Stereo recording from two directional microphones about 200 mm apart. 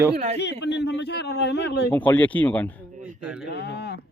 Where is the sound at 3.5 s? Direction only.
55° left (ahead or behind).